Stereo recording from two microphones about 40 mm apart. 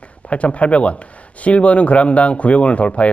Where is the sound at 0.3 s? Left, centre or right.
Left.